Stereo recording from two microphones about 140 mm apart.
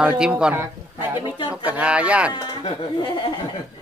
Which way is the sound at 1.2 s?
35° left (ahead or behind).